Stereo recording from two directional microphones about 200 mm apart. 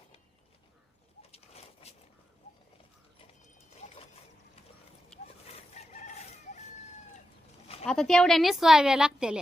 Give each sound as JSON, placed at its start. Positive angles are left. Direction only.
{"t": 1.3, "sound": "bird", "side_deg": 30}
{"t": 5.1, "sound": "dog", "side_deg": 5}
{"t": 5.7, "sound": "chicken", "side_deg": 35}
{"t": 7.9, "sound": "a woman's voice", "side_deg": 5}